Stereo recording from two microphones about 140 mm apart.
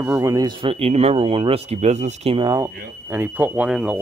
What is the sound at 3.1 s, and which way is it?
Speech, 15° right (ahead or behind).